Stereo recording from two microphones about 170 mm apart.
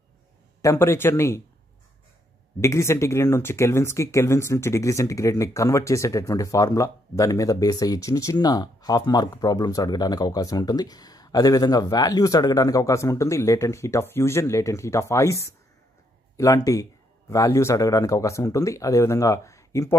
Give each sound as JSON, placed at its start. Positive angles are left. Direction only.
{"t": 0.6, "sound": "speech", "side_deg": 15}
{"t": 2.6, "sound": "speech", "side_deg": 15}